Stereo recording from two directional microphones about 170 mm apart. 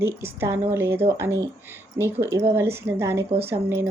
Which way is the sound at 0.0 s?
15° right (ahead or behind).